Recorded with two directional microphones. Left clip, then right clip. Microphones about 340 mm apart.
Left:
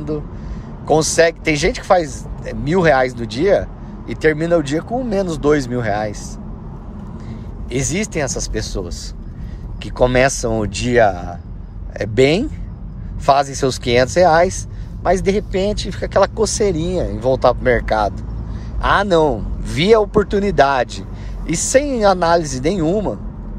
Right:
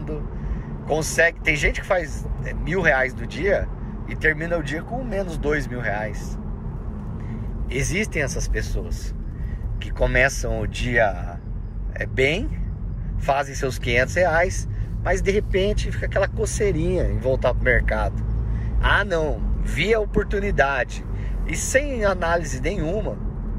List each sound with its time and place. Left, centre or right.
0.8 s speech: centre
5.8 s speech: left
7.7 s speech: centre
9.9 s speech: centre
11.0 s speech: left
12.0 s speech: centre